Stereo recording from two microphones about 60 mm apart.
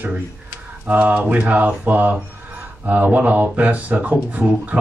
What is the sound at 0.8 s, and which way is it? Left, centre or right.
Speech, right.